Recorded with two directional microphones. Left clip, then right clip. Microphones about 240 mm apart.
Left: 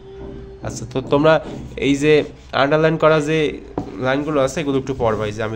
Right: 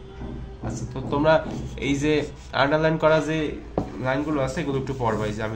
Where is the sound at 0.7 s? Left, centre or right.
Left.